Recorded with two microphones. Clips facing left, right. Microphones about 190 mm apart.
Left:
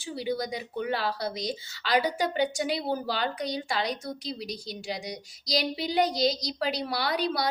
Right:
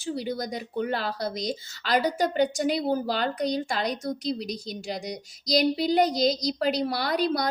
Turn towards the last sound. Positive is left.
turn(degrees=-45)  # may be behind; listen again after turning